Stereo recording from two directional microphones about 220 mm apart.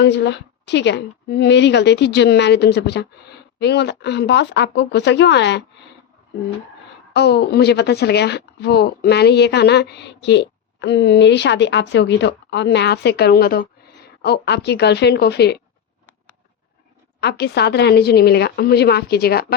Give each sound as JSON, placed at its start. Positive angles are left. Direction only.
{"t": 0.0, "sound": "a woman's voice", "side_deg": 50}
{"t": 7.1, "sound": "a woman's voice", "side_deg": 50}
{"t": 17.2, "sound": "a woman's voice", "side_deg": 50}